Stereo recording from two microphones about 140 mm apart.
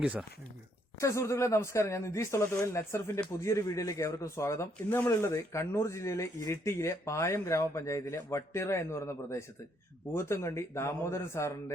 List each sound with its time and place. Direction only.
0.0 s speech: 10° right (ahead or behind)
0.9 s speech: 20° left (ahead or behind)